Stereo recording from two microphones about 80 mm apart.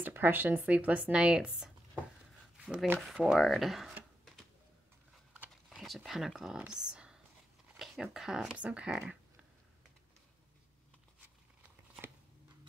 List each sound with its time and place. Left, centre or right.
0.0 s speech: right
2.5 s a sound: centre
3.3 s speech: centre
5.7 s speech: centre
6.7 s a sound: centre
7.8 s speech: centre